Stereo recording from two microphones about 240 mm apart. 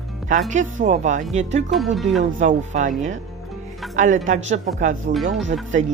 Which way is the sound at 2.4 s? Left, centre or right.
Right.